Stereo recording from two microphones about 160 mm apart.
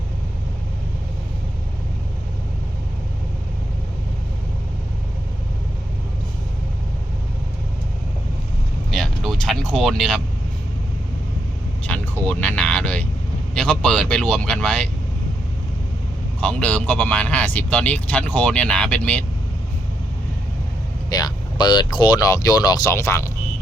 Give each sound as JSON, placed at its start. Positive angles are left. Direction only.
{"t": 8.9, "sound": "vehicle", "side_deg": 0}
{"t": 11.9, "sound": "speech", "side_deg": 10}
{"t": 16.4, "sound": "speech", "side_deg": 5}
{"t": 21.1, "sound": "speech", "side_deg": 25}